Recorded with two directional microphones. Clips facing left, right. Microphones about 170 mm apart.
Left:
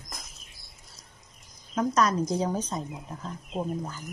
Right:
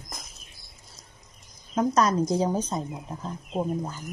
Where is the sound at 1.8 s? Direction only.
30° right (ahead or behind).